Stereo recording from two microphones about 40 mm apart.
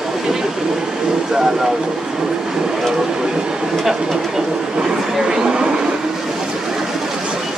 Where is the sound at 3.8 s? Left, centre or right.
Centre.